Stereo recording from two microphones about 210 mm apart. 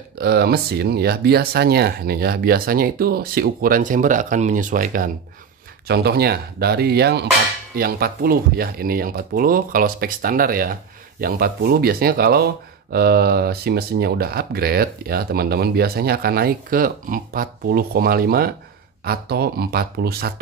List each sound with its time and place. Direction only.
0.2 s speech: 50° right (ahead or behind)